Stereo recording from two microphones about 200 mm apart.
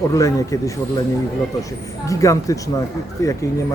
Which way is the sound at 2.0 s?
15° left (ahead or behind).